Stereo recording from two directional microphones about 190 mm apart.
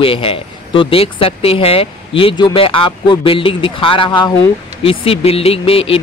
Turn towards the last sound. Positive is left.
turn(degrees=30)  # may be behind; listen again after turning